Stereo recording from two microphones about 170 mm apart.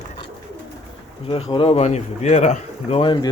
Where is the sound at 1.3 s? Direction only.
30° left (ahead or behind).